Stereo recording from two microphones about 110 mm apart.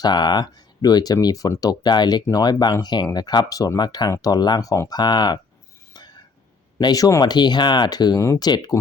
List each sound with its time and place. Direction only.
0.0 s speech: 40° left (ahead or behind)
6.7 s speech: 35° left (ahead or behind)